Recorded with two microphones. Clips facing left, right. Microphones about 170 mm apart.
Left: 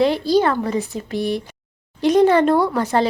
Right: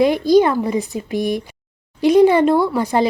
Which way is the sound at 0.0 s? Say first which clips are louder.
Right 3 dB; 15° right (ahead or behind).